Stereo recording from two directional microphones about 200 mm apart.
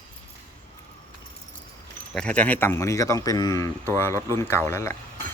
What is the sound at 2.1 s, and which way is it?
Speech, 5° left (ahead or behind).